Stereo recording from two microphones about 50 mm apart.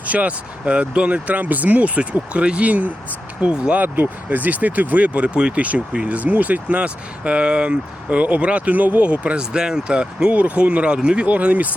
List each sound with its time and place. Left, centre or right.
0.0 s speech: right
3.8 s speech: right
11.3 s speech: right